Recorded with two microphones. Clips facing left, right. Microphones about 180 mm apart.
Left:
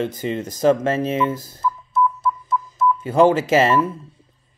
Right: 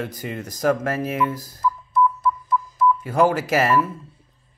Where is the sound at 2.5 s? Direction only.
20° left (ahead or behind).